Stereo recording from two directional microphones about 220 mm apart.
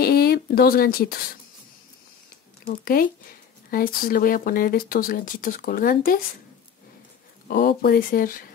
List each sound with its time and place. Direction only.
0.0 s speech: 45° left (ahead or behind)
2.6 s speech: 40° left (ahead or behind)
7.4 s speech: 45° left (ahead or behind)